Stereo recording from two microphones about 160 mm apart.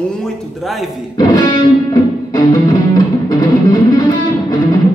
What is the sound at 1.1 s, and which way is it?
Music, 25° left (ahead or behind).